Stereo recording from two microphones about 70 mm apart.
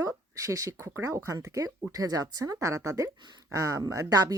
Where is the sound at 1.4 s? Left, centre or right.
Right.